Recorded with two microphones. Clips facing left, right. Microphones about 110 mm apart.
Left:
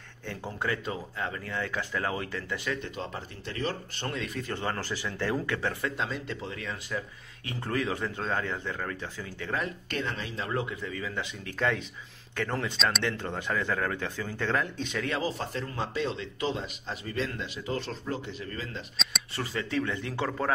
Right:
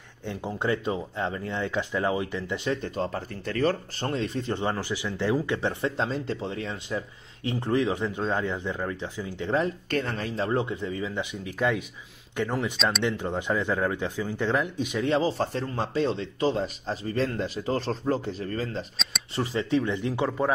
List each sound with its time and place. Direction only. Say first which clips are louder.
0.3 s speech: right 5 dB; 20° right (ahead or behind)
2.8 s speech: right 7 dB; 40° right (ahead or behind)
4.1 s speech: right 6 dB; 30° right (ahead or behind)
9.8 s speech: right 5 dB; 40° right (ahead or behind); by 12.7 s 15° right (ahead or behind)
12.7 s speech: right 2 dB; centre (ahead or behind)
13.0 s speech: right 4 dB; 20° right (ahead or behind)
15.0 s speech: right 9 dB; 30° right (ahead or behind)
19.3 s speech: right 6 dB; 20° right (ahead or behind)